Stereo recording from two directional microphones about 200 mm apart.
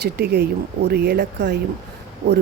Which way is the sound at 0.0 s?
55° right (ahead or behind).